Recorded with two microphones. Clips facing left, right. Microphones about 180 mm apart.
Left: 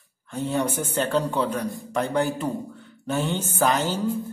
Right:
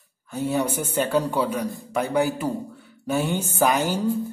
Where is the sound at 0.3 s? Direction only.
10° right (ahead or behind).